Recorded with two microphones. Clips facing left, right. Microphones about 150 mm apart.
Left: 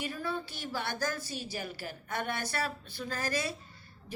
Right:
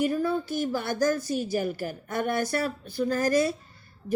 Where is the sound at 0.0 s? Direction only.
45° right (ahead or behind).